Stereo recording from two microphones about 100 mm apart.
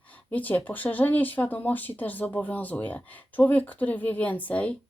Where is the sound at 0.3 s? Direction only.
15° left (ahead or behind).